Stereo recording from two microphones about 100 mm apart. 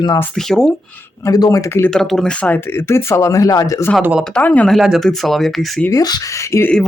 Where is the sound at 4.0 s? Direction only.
10° right (ahead or behind).